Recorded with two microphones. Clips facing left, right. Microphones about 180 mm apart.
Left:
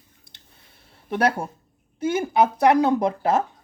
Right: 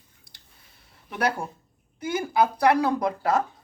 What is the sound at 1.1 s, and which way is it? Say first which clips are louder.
A woman's voice: left 5 dB; 25° left (ahead or behind).